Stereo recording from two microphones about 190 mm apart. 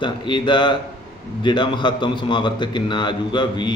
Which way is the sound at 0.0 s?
25° left (ahead or behind).